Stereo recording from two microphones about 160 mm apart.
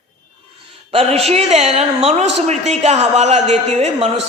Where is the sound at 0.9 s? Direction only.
40° right (ahead or behind).